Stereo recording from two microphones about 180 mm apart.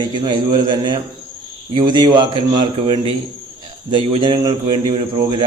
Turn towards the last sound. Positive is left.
turn(degrees=-25)  # may be behind; listen again after turning